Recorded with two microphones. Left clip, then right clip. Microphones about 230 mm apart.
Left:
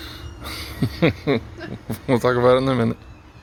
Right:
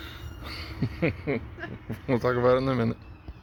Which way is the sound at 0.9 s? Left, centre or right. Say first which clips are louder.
Left 9 dB; left.